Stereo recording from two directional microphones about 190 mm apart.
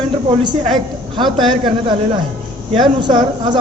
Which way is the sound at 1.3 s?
Centre (ahead or behind).